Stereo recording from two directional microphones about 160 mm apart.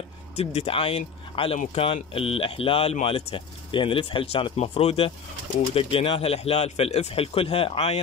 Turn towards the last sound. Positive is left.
turn(degrees=40)  # may be behind; listen again after turning